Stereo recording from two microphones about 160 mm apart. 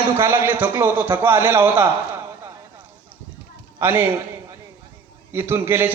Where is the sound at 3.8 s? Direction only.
15° right (ahead or behind).